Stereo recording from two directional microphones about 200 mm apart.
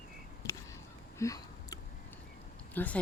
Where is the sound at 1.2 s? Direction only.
15° left (ahead or behind).